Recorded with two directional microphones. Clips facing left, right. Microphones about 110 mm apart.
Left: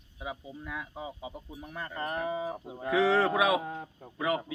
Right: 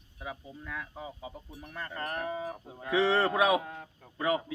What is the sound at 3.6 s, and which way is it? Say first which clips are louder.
Speech: left 5 dB; 25° left (ahead or behind).